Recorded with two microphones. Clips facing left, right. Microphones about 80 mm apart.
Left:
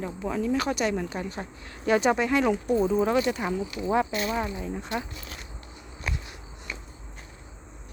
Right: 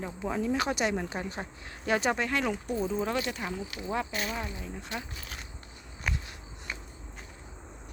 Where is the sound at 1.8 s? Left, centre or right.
Centre.